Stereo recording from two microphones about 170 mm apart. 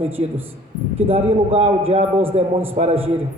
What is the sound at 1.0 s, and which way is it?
A man's voice, 35° right (ahead or behind).